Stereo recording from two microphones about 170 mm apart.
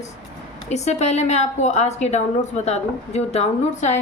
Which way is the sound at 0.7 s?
40° left (ahead or behind).